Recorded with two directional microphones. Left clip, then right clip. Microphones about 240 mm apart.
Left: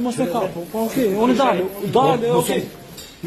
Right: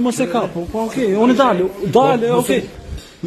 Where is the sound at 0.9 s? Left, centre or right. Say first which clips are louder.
Right 3 dB; right.